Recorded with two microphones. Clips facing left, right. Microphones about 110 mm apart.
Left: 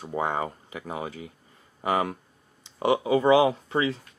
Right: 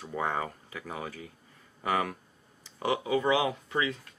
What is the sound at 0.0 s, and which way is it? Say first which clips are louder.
Speech: left 4 dB; 25° left (ahead or behind).